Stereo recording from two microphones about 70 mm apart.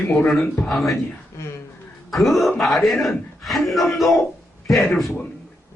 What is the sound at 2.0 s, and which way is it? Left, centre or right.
Speech, centre.